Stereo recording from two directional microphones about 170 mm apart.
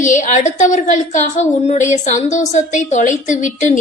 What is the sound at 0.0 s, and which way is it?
A woman's voice, 45° left (ahead or behind).